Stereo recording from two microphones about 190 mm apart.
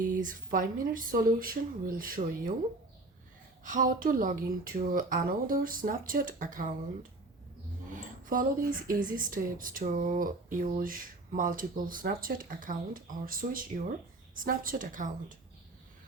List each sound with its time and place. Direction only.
0.1 s speech: 45° right (ahead or behind)
3.6 s speech: 45° right (ahead or behind)
7.9 s a sound: 45° right (ahead or behind)
8.9 s speech: 45° right (ahead or behind)